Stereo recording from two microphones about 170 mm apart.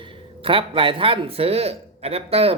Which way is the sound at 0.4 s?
30° right (ahead or behind).